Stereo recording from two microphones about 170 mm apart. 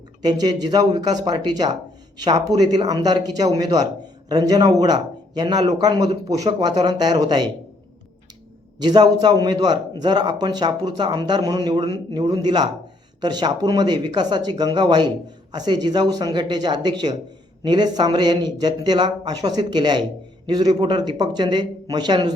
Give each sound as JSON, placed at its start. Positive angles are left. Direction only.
{"t": 0.2, "sound": "a man's voice", "side_deg": -25}
{"t": 8.8, "sound": "a man's voice", "side_deg": -25}